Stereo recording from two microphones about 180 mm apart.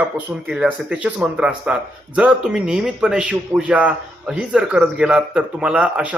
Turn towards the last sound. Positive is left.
turn(degrees=-5)  # may be behind; listen again after turning